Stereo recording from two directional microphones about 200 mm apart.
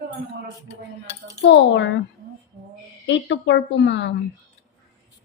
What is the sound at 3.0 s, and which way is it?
A woman's voice, 65° left (ahead or behind).